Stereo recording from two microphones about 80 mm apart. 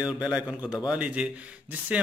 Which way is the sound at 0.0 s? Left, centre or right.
Centre.